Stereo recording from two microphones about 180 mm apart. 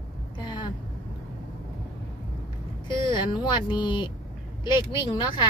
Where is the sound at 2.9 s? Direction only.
25° left (ahead or behind).